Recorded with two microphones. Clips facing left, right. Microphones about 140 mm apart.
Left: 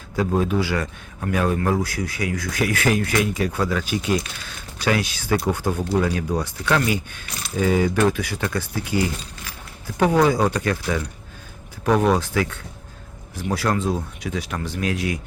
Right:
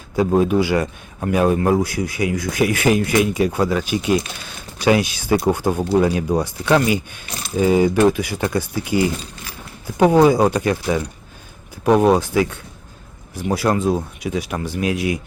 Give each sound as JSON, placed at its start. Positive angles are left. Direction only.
{"t": 0.2, "sound": "speech", "side_deg": -15}